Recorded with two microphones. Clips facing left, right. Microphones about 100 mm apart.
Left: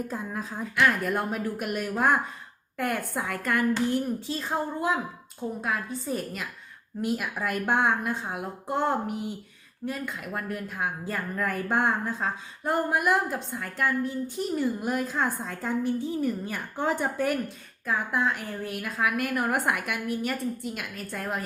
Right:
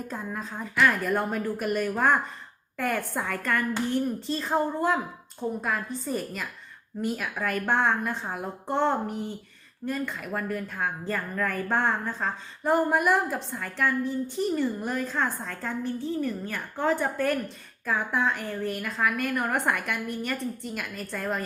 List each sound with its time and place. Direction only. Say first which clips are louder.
0.1 s a woman's voice: left 1 dB; 5° left (ahead or behind)
17.8 s a woman's voice: even; 5° left (ahead or behind)